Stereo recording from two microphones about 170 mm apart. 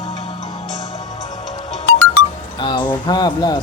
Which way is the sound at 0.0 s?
25° left (ahead or behind).